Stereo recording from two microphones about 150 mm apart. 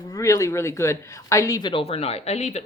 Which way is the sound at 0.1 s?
20° left (ahead or behind).